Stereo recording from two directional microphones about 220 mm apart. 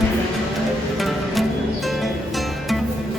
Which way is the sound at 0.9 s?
Centre (ahead or behind).